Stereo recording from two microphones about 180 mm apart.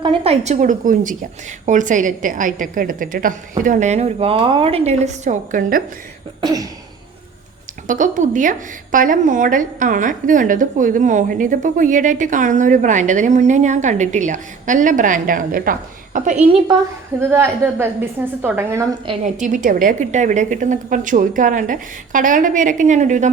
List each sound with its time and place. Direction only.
0.0 s a woman's voice: 30° right (ahead or behind); by 5.8 s 45° right (ahead or behind)
6.4 s cough: 20° right (ahead or behind)
7.9 s a woman's voice: 45° right (ahead or behind)
17.2 s a woman's voice: 15° right (ahead or behind)
19.2 s a woman's voice: 45° right (ahead or behind)